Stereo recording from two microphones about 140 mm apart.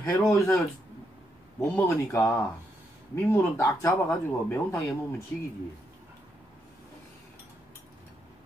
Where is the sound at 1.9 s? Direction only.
20° left (ahead or behind).